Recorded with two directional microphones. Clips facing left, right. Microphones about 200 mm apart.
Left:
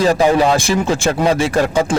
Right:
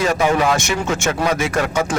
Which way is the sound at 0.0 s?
35° left (ahead or behind).